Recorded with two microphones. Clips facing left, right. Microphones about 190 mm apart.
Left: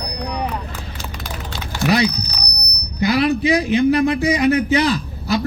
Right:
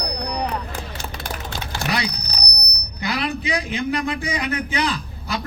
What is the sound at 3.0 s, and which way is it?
A man's voice, 40° left (ahead or behind).